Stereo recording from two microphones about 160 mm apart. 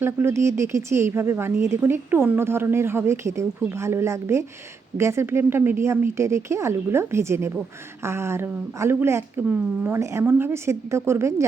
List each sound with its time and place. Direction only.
0.0 s a woman's voice: 15° right (ahead or behind)